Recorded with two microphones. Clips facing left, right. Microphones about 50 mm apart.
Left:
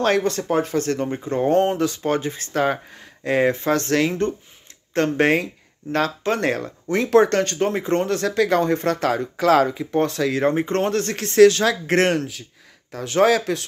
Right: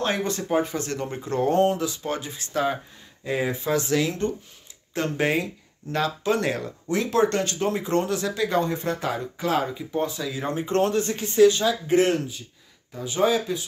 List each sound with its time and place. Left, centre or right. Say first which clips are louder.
0.0 s speech: left 6 dB; left
1.0 s speech: left 3 dB; left
1.8 s speech: left 7 dB; left
9.4 s speech: left 9 dB; left
10.5 s speech: left 2 dB; left